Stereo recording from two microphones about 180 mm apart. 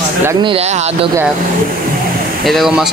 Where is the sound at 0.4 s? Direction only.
30° right (ahead or behind).